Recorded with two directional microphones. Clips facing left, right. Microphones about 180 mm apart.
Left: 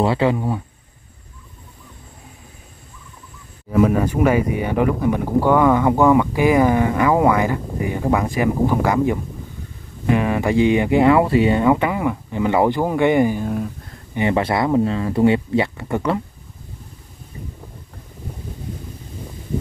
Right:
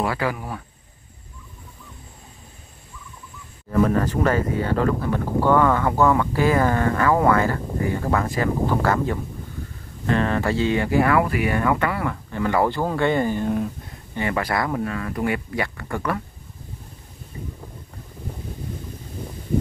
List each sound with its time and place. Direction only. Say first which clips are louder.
0.0 s speech: left 7 dB; 25° left (ahead or behind)
3.7 s speech: left 3 dB; 10° left (ahead or behind)
14.1 s speech: left 5 dB; 20° left (ahead or behind)